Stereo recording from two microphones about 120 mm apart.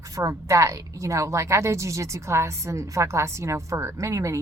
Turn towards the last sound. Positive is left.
turn(degrees=-25)  # may be behind; listen again after turning